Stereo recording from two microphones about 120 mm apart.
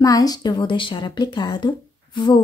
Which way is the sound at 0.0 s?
30° left (ahead or behind).